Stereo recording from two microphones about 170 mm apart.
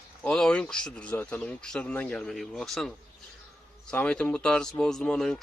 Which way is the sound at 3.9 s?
5° left (ahead or behind).